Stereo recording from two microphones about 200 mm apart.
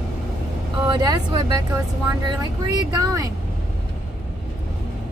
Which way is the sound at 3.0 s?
20° right (ahead or behind).